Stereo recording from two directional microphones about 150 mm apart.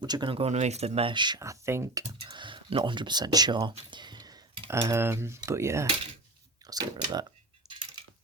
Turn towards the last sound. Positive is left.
turn(degrees=-25)  # may be behind; listen again after turning